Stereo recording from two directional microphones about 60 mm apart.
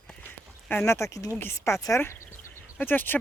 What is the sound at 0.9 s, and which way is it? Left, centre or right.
Speech, left.